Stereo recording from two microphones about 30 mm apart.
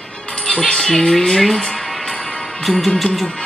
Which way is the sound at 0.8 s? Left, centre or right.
Centre.